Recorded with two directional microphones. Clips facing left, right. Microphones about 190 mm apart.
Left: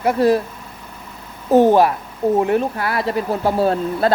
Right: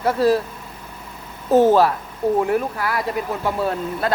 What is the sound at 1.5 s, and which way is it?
Speech, 15° left (ahead or behind).